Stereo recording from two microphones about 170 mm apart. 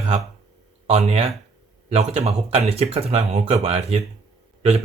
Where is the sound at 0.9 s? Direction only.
35° right (ahead or behind).